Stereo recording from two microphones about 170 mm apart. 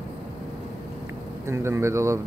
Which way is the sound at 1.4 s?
15° right (ahead or behind).